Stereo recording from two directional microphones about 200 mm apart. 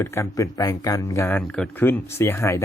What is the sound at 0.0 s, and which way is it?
Speech, 15° left (ahead or behind).